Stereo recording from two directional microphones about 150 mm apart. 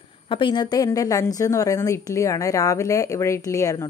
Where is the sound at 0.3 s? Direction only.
30° left (ahead or behind).